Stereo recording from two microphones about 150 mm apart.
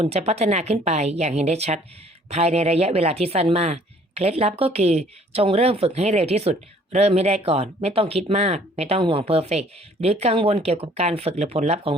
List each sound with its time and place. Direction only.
0.0 s speech: 45° right (ahead or behind)